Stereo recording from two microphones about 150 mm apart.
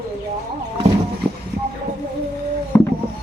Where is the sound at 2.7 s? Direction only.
15° left (ahead or behind).